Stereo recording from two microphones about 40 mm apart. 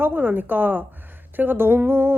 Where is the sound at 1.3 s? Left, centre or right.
Right.